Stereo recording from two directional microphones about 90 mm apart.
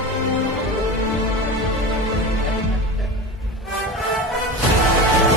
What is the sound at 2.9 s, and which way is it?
Music, centre (ahead or behind).